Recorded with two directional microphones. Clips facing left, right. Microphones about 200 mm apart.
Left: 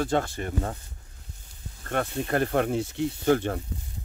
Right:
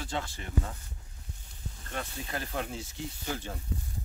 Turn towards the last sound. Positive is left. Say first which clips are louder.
# left 14 dB
turn(degrees=65)  # may be behind; listen again after turning